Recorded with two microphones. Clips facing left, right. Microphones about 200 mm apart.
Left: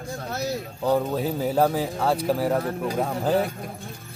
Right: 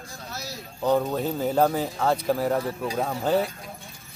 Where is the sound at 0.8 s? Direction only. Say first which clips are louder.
Right 1 dB; 5° left (ahead or behind).